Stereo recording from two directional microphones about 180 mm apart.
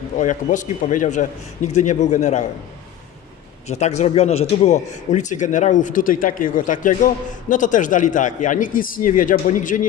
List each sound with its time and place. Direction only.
0.2 s a man's voice: 45° left (ahead or behind)
3.7 s a man's voice: 40° left (ahead or behind)